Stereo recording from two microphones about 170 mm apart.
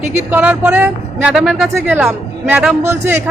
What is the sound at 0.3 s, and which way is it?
A man's voice, 10° right (ahead or behind).